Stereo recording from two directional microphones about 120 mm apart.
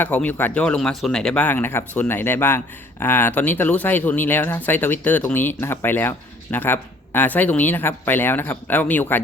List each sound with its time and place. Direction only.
0.0 s speech: 15° left (ahead or behind)